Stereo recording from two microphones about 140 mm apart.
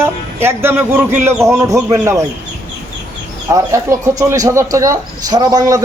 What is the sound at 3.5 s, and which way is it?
A man's voice, 20° right (ahead or behind).